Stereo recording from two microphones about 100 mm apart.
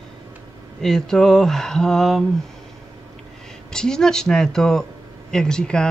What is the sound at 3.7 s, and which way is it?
Speech, 5° left (ahead or behind).